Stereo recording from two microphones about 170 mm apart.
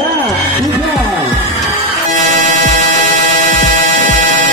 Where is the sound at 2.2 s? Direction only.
40° right (ahead or behind).